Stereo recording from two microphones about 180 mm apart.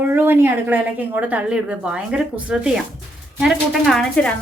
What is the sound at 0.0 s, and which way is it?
A woman's voice, 10° right (ahead or behind).